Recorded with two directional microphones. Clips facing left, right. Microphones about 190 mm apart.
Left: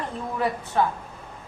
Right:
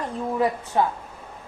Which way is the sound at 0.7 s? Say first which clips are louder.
Right 1 dB; 20° right (ahead or behind).